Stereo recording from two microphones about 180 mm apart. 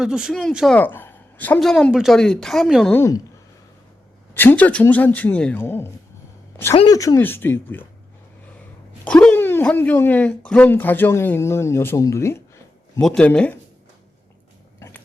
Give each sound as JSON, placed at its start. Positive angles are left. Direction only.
{"t": 0.0, "sound": "a woman's voice", "side_deg": -5}
{"t": 0.8, "sound": "a woman's voice", "side_deg": 10}
{"t": 2.9, "sound": "speech", "side_deg": 15}
{"t": 4.4, "sound": "speech", "side_deg": 10}
{"t": 9.0, "sound": "speech", "side_deg": 5}
{"t": 13.0, "sound": "a woman's voice", "side_deg": 5}
{"t": 14.8, "sound": "gears", "side_deg": 15}